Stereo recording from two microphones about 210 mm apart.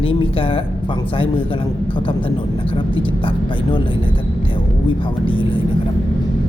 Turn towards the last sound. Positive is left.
turn(degrees=25)  # may be behind; listen again after turning